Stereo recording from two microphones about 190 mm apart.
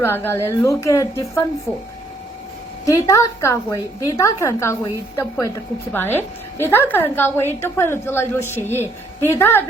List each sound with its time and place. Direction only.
0.0 s a woman's voice: 10° left (ahead or behind)
2.8 s a woman's voice: 15° left (ahead or behind)
8.7 s a woman's voice: 10° right (ahead or behind)
9.4 s a woman's voice: 10° left (ahead or behind)